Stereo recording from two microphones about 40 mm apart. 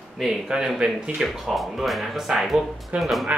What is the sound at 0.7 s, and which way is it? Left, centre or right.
Speech, right.